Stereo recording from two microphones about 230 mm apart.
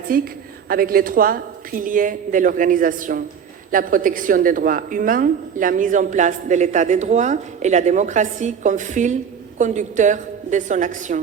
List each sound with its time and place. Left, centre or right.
0.1 s a woman's voice: right